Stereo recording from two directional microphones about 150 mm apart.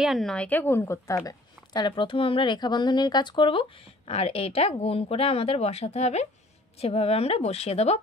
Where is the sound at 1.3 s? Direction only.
30° left (ahead or behind).